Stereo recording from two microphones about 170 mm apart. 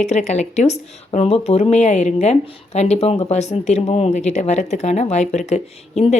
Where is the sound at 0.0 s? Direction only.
40° left (ahead or behind).